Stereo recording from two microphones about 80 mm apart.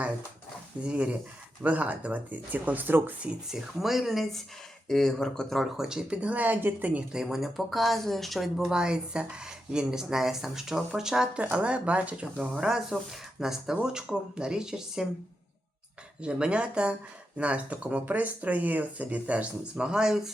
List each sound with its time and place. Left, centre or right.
0.8 s speech: centre
3.5 s speech: centre
5.8 s speech: centre
16.2 s speech: centre